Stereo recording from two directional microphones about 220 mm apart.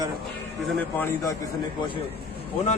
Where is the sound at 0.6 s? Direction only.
5° left (ahead or behind).